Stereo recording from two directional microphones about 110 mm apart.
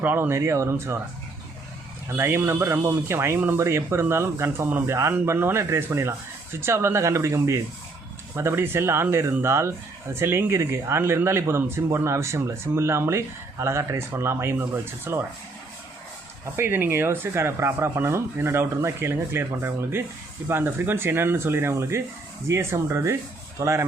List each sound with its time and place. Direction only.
0.0 s speech: 20° right (ahead or behind)
2.0 s speech: 20° right (ahead or behind)
16.6 s speech: 20° right (ahead or behind)